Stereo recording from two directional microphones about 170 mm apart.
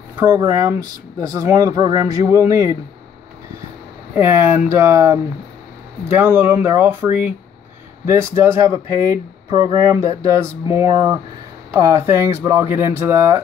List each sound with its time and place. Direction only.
0.4 s speech: 20° right (ahead or behind)
4.1 s speech: 15° right (ahead or behind)